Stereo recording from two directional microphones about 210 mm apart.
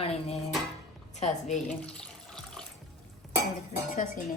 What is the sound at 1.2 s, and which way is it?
Speech, 35° left (ahead or behind).